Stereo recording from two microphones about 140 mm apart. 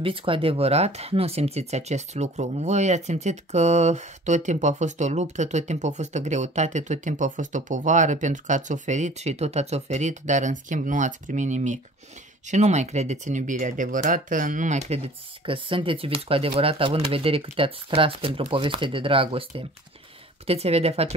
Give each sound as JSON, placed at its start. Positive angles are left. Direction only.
{"t": 0.0, "sound": "speech", "side_deg": -40}
{"t": 15.4, "sound": "speech", "side_deg": -40}